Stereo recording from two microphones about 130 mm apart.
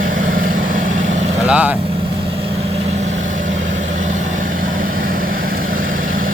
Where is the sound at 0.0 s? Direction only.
90° right.